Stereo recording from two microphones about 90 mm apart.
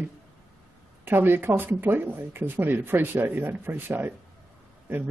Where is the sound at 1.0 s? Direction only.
25° right (ahead or behind).